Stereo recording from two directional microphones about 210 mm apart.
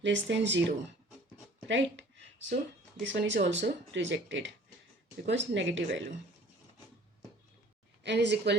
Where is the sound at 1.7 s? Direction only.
60° right (ahead or behind).